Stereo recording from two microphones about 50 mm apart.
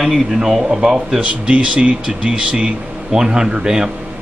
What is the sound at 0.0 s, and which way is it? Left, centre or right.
Speech, centre.